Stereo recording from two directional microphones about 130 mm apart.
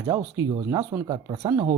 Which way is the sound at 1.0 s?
30° right (ahead or behind).